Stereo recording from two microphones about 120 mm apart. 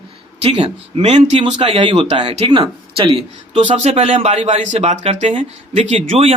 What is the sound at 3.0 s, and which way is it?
Speech, 45° right (ahead or behind).